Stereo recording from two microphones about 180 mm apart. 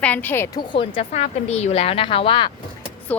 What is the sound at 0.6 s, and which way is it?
A woman's voice, 25° left (ahead or behind).